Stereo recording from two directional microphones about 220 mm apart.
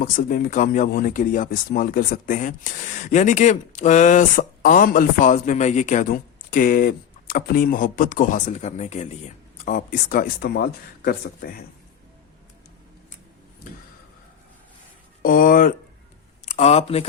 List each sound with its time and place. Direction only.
0.0 s speech: 40° left (ahead or behind)
15.2 s speech: 40° left (ahead or behind)
16.5 s speech: 30° left (ahead or behind)